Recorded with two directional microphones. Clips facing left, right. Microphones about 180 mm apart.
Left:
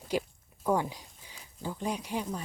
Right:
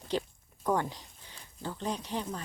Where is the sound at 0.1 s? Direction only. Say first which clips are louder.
Left 1 dB; 10° left (ahead or behind).